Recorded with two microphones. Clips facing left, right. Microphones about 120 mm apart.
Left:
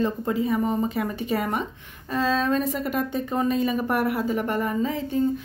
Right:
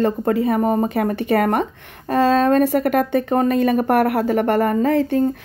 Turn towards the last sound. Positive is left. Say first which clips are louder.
# right 8 dB
turn(degrees=-65)  # may be behind; listen again after turning